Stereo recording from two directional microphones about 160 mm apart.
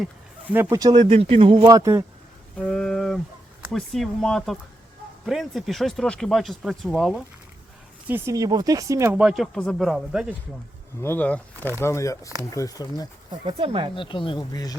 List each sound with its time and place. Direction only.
0.0 s speech: 10° right (ahead or behind); by 1.6 s 35° right (ahead or behind)
1.6 s speech: 20° right (ahead or behind)
2.6 s a sound: 5° left (ahead or behind)
3.7 s speech: centre (ahead or behind)
8.0 s speech: 15° right (ahead or behind)
9.2 s speech: centre (ahead or behind)
11.0 s speech: 10° left (ahead or behind)
13.4 s speech: 35° right (ahead or behind)
13.9 s speech: 30° left (ahead or behind)